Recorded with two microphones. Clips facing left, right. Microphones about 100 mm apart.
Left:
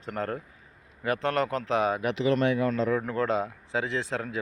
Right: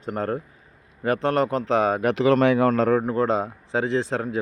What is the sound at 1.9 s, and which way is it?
Speech, 45° right (ahead or behind).